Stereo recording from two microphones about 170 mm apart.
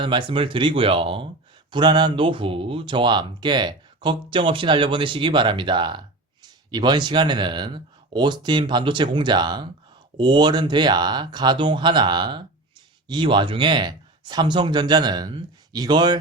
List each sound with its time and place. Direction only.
0.0 s speech: 30° right (ahead or behind)